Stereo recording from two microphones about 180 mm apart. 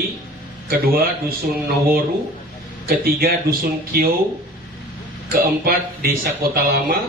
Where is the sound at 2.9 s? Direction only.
55° right (ahead or behind).